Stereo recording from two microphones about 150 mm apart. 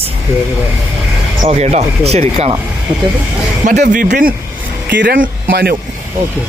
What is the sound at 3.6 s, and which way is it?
Speech, 60° right (ahead or behind).